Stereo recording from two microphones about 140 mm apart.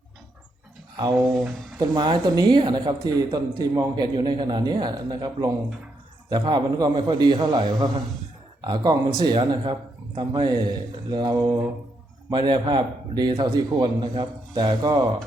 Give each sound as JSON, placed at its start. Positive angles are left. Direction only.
{"t": 1.4, "sound": "a man's voice", "side_deg": -30}